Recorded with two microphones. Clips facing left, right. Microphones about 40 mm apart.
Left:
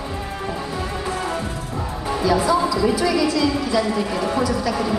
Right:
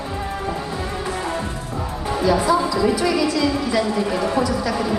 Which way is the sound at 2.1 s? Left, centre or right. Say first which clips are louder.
Right 1 dB; centre.